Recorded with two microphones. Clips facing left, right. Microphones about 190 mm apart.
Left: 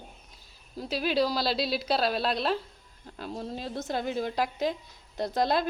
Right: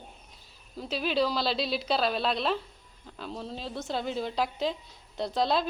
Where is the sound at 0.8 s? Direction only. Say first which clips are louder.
Left 1 dB; 10° left (ahead or behind).